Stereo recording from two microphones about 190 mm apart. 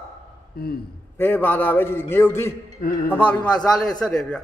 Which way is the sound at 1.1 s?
10° left (ahead or behind).